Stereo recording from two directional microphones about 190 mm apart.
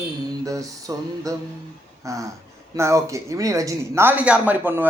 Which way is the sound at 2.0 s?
15° right (ahead or behind).